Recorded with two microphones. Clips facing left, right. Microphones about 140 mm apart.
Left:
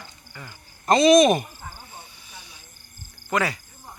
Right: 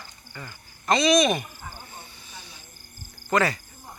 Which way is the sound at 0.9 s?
45° left (ahead or behind).